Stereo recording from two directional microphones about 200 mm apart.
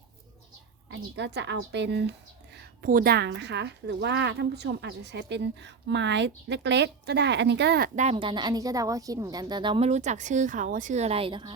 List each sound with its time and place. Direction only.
0.9 s a woman's voice: 60° right (ahead or behind)
2.6 s a woman's voice: 45° right (ahead or behind)
7.9 s speech: 30° right (ahead or behind)